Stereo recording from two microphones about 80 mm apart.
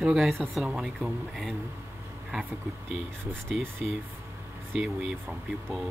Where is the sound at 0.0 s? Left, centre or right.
Centre.